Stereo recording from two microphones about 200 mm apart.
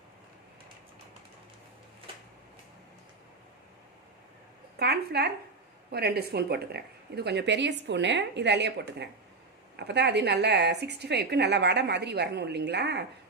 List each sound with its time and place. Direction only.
4.8 s a woman's voice: 55° right (ahead or behind)
9.7 s a woman's voice: 55° right (ahead or behind)